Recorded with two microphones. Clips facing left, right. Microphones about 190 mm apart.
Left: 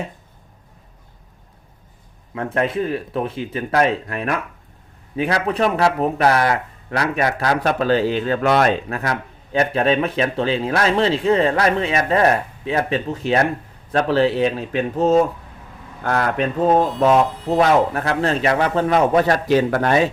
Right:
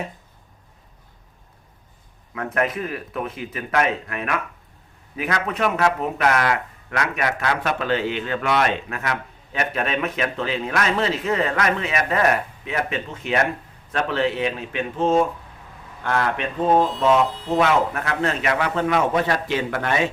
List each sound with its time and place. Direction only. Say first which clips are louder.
2.3 s speech: left 3 dB; 30° left (ahead or behind)
17.6 s speech: left 4 dB; 35° left (ahead or behind)